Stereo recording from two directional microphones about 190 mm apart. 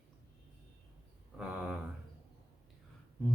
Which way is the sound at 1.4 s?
5° right (ahead or behind).